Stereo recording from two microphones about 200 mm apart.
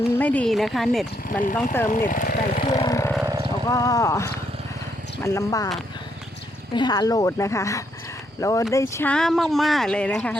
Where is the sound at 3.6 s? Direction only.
15° left (ahead or behind).